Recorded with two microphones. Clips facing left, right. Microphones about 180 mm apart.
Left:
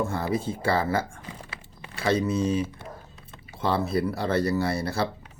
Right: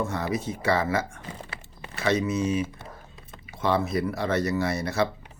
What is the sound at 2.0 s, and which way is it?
Speech, 30° left (ahead or behind).